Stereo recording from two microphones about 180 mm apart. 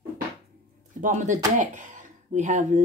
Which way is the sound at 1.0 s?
45° right (ahead or behind).